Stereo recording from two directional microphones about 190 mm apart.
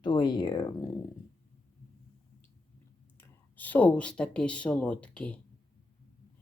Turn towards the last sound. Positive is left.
turn(degrees=5)  # may be behind; listen again after turning